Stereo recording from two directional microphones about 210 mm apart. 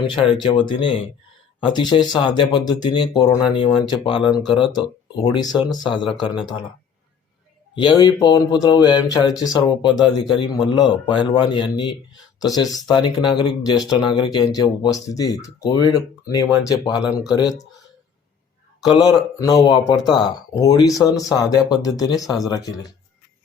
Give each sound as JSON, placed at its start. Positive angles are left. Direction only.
{"t": 0.1, "sound": "speech", "side_deg": 25}
{"t": 7.8, "sound": "speech", "side_deg": 20}
{"t": 18.9, "sound": "speech", "side_deg": 20}